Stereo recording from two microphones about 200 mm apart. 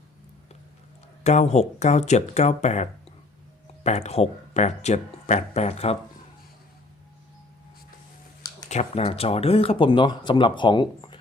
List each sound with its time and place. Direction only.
1.2 s speech: 35° left (ahead or behind)
8.7 s speech: 30° left (ahead or behind)